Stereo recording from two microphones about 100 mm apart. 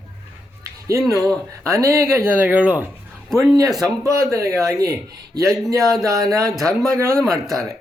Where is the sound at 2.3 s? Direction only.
15° right (ahead or behind).